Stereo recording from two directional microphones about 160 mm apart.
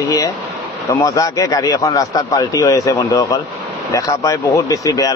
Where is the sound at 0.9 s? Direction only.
20° left (ahead or behind).